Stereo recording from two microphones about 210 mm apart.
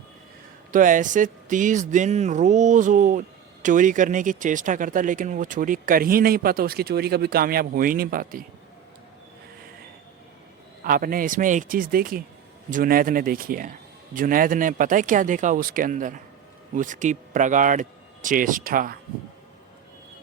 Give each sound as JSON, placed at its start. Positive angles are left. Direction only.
{"t": 0.7, "sound": "speech", "side_deg": -40}
{"t": 10.8, "sound": "speech", "side_deg": -40}